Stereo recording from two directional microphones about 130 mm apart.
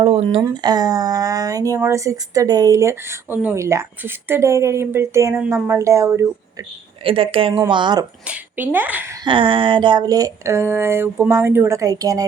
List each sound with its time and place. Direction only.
0.0 s speech: 45° right (ahead or behind)
0.4 s speech: 30° right (ahead or behind)
7.0 s speech: 45° right (ahead or behind)
8.3 s a woman's voice: 15° right (ahead or behind)
9.2 s speech: 40° right (ahead or behind)